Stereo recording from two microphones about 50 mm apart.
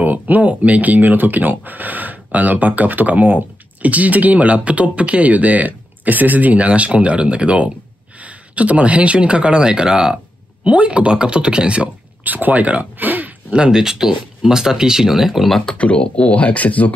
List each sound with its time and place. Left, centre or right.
0.0 s speech: right
12.2 s speech: right
13.5 s speech: centre
15.6 s speech: left